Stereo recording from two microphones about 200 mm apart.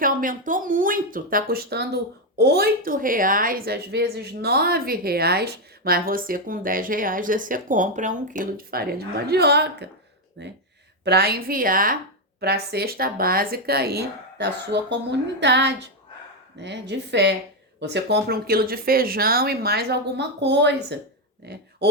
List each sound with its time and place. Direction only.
0.0 s a woman's voice: 40° right (ahead or behind)